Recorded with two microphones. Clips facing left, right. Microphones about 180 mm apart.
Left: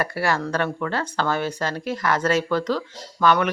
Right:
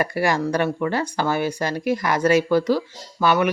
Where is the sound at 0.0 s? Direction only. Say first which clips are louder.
Right 3 dB; 15° right (ahead or behind).